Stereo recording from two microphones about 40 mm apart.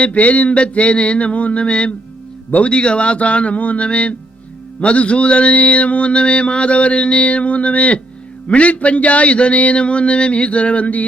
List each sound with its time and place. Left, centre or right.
0.0 s mantra: left